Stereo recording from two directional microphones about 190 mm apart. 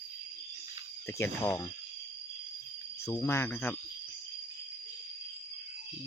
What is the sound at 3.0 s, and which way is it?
Speech, 15° left (ahead or behind).